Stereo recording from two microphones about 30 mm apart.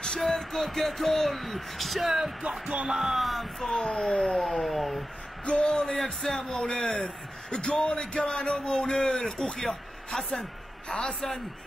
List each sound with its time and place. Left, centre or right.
0.2 s speech: centre
2.6 s music: right
2.9 s music: centre
3.2 s speech: centre
3.7 s speech: left
4.4 s speech: centre
5.4 s speech: left
6.0 s a man's voice: centre
10.9 s speech: left